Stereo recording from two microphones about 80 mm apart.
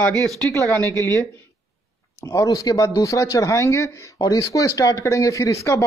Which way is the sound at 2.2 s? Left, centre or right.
Left.